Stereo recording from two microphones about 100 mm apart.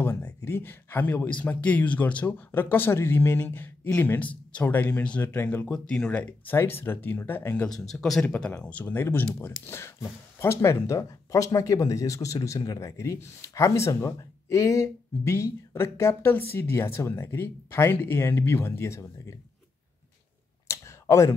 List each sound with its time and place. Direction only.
0.0 s speech: 25° left (ahead or behind)
5.7 s speech: 10° left (ahead or behind)
7.7 s speech: 5° left (ahead or behind); by 19.3 s 30° left (ahead or behind)
20.6 s a sound: 30° left (ahead or behind)